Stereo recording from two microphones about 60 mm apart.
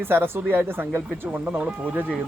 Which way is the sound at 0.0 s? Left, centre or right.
Right.